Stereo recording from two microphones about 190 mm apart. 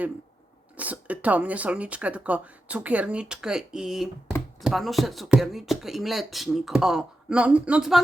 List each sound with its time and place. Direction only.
0.8 s speech: 10° right (ahead or behind)